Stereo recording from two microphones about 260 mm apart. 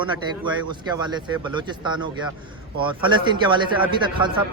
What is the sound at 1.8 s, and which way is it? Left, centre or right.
Speech, centre.